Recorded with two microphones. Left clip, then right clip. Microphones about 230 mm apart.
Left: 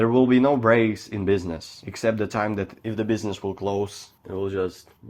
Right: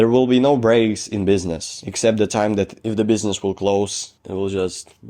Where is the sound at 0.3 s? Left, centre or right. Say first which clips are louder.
Right 3 dB; right.